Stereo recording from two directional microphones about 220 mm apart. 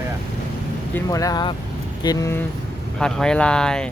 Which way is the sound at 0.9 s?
15° left (ahead or behind).